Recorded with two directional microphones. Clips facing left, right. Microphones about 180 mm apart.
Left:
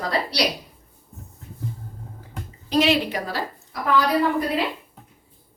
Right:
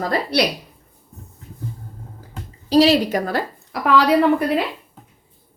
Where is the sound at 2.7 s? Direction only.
35° right (ahead or behind).